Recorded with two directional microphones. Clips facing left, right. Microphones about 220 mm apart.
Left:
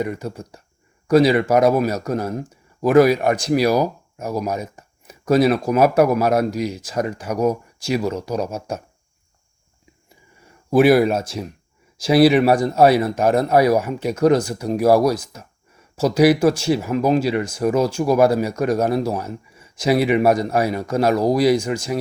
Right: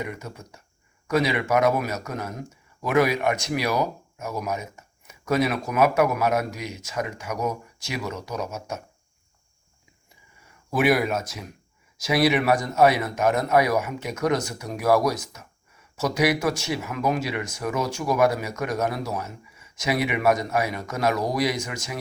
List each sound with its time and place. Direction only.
0.0 s speech: 35° left (ahead or behind)
10.7 s speech: 30° left (ahead or behind)